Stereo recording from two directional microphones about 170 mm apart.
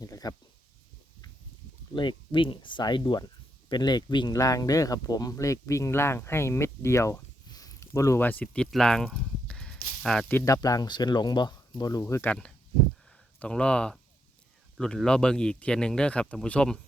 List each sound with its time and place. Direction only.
0.0 s speech: 20° left (ahead or behind)
2.0 s speech: 30° left (ahead or behind); by 16.8 s 5° left (ahead or behind)